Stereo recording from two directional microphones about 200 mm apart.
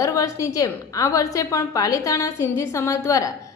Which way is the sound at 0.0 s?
15° left (ahead or behind).